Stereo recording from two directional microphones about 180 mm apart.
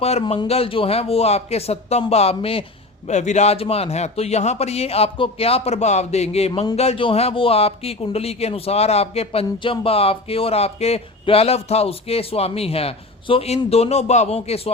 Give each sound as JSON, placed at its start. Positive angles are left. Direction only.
{"t": 0.0, "sound": "speech", "side_deg": 35}
{"t": 6.5, "sound": "speech", "side_deg": 25}